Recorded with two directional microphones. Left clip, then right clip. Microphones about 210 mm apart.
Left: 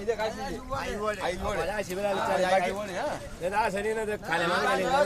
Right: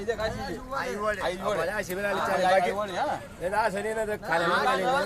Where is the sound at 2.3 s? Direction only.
15° left (ahead or behind).